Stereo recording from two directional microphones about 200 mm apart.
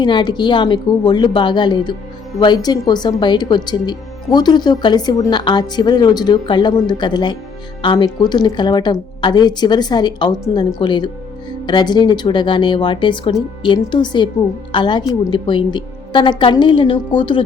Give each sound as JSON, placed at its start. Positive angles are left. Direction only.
{"t": 0.0, "sound": "speech", "side_deg": 20}